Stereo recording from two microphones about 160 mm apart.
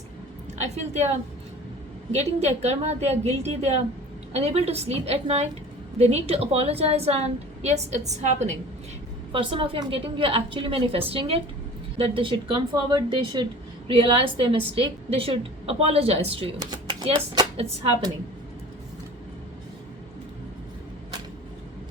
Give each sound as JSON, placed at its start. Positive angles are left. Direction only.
{"t": 0.6, "sound": "a woman's voice", "side_deg": -45}
{"t": 2.1, "sound": "a woman's voice", "side_deg": -45}
{"t": 9.3, "sound": "a woman's voice", "side_deg": -35}